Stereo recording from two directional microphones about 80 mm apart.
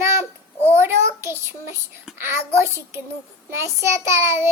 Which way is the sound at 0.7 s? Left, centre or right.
Right.